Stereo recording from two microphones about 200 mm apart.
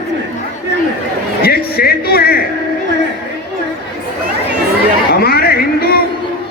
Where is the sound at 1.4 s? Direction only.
50° left (ahead or behind).